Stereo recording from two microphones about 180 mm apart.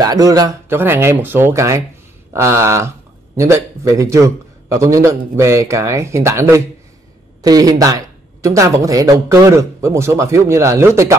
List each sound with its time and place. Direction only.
0.0 s speech: 20° right (ahead or behind)